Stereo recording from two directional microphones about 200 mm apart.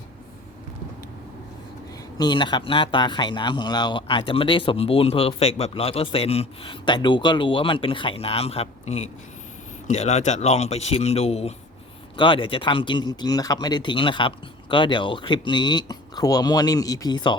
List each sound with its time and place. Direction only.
2.1 s a man's voice: 20° left (ahead or behind)